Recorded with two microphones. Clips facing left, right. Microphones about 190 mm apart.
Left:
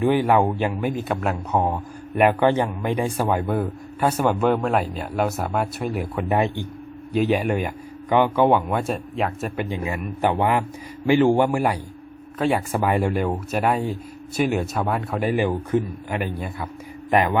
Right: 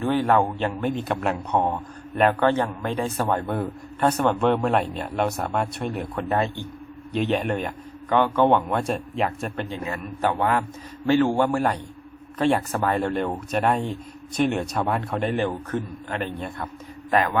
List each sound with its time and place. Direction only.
0.0 s speech: 15° left (ahead or behind)
9.6 s speech: 15° left (ahead or behind)